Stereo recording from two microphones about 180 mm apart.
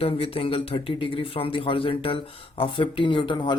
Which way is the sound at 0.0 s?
30° left (ahead or behind).